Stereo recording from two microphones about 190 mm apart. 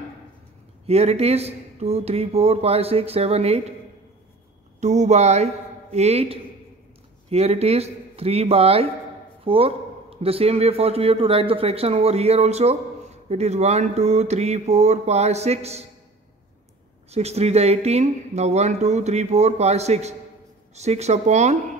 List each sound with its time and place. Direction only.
0.8 s a man's voice: 35° right (ahead or behind)
4.7 s a man's voice: 40° right (ahead or behind)
17.1 s a man's voice: 35° right (ahead or behind)